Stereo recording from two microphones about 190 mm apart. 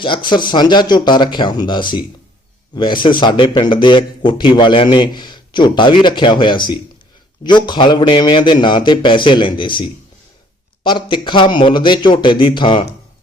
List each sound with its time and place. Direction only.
0.0 s a man's voice: 25° left (ahead or behind)